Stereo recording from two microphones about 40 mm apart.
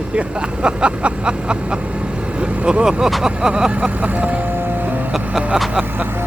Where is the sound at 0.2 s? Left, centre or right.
Right.